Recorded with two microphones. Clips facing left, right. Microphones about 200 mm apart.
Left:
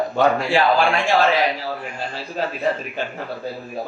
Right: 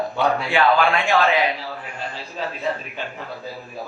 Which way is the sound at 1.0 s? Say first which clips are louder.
Left 1 dB; 45° left (ahead or behind).